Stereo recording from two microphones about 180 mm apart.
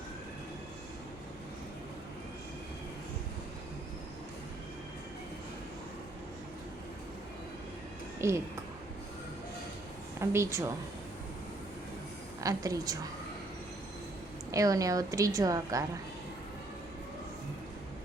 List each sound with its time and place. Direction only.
8.2 s a woman's voice: 15° right (ahead or behind)
10.2 s a woman's voice: 15° right (ahead or behind)
12.4 s a woman's voice: 20° right (ahead or behind)
14.5 s a woman's voice: 20° right (ahead or behind)